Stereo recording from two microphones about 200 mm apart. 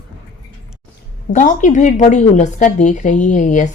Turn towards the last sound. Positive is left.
turn(degrees=40)  # may be behind; listen again after turning